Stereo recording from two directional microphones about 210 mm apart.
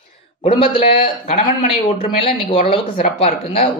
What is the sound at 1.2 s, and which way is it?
Speech, 25° left (ahead or behind).